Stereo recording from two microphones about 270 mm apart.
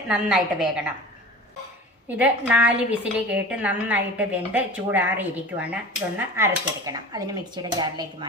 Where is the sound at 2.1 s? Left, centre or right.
Centre.